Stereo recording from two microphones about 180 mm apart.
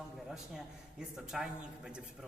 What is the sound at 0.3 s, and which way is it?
Speech, 5° right (ahead or behind).